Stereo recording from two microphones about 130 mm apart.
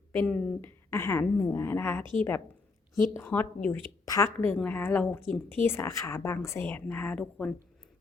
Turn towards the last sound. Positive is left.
turn(degrees=10)  # may be behind; listen again after turning